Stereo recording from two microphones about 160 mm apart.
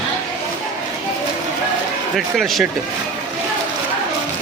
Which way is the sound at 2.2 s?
Centre (ahead or behind).